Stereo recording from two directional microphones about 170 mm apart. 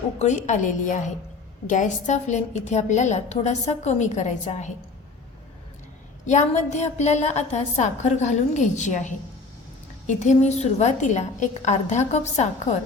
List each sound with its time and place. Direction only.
0.2 s a woman's voice: 45° left (ahead or behind)
6.2 s a woman's voice: 45° left (ahead or behind)